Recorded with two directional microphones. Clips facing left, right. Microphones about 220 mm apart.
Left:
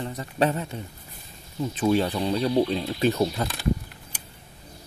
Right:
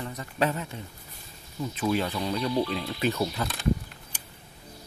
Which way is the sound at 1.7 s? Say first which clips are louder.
Left 5 dB; 30° left (ahead or behind).